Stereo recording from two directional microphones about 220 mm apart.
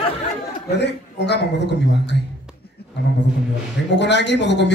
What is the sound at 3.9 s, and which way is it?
Speech, 50° left (ahead or behind).